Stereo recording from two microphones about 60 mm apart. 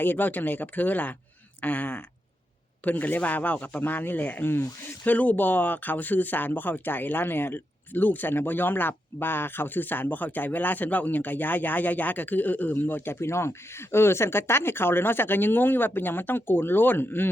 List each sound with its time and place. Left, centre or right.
0.0 s speech: left
5.0 s speech: left